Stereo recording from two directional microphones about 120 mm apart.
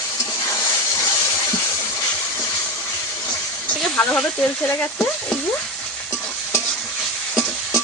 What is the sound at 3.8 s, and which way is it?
Speech, 10° left (ahead or behind).